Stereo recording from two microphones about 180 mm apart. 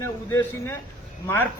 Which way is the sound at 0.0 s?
15° left (ahead or behind).